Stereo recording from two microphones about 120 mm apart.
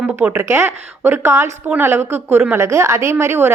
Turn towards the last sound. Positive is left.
turn(degrees=-20)  # may be behind; listen again after turning